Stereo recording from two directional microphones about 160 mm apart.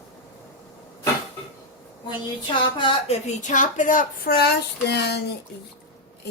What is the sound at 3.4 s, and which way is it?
Speech, 50° left (ahead or behind).